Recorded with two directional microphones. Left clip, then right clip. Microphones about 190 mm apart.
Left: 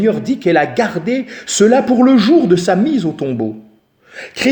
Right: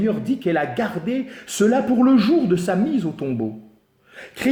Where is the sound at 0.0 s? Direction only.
40° left (ahead or behind).